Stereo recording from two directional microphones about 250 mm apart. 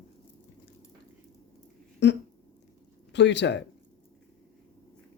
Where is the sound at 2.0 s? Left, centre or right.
Left.